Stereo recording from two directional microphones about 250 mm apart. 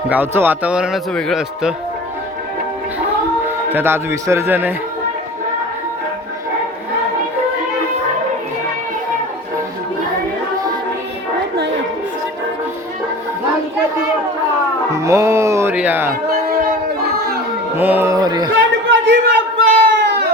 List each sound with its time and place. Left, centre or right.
0.1 s speech: centre
3.7 s a man's voice: centre
14.9 s speech: centre
17.7 s a man's voice: centre
18.9 s chatter: right